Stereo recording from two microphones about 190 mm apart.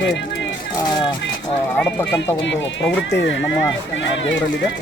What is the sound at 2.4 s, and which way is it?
Speech, 75° left (ahead or behind).